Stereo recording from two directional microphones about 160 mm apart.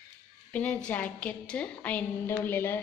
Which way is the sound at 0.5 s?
10° left (ahead or behind).